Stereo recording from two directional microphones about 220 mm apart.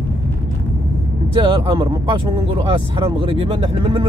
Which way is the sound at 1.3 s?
20° right (ahead or behind).